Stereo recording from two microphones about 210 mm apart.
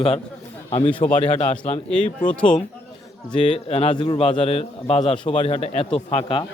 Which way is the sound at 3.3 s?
25° left (ahead or behind).